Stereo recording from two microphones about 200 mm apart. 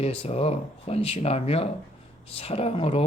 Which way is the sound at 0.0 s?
30° left (ahead or behind).